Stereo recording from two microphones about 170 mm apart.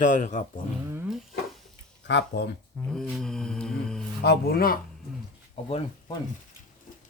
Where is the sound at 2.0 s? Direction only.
90° left.